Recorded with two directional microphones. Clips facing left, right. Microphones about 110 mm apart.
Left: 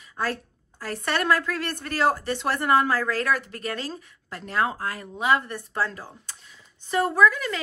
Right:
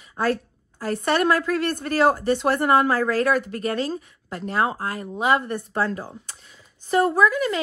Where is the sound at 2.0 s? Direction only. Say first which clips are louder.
Right 4 dB; 45° right (ahead or behind); by 3.3 s 25° right (ahead or behind).